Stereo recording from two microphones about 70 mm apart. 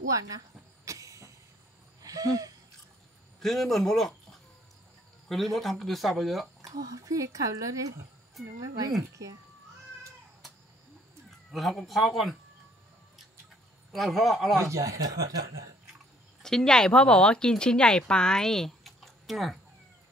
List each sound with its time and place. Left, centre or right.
0.1 s speech: right
0.8 s train: right
2.0 s a sound: right
3.3 s speech: centre
6.6 s speech: right
11.2 s speech: centre
13.9 s speech: centre
14.6 s speech: right
16.4 s speech: centre